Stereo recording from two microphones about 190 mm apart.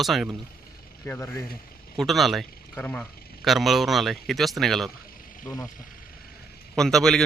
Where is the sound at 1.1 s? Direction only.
15° left (ahead or behind).